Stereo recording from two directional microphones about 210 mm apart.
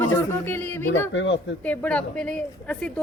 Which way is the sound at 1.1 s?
60° left (ahead or behind).